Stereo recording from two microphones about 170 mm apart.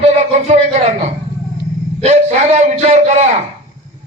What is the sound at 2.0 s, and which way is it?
A man's voice, 40° right (ahead or behind).